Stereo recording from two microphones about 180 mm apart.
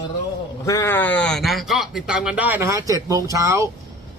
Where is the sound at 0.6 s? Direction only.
15° left (ahead or behind).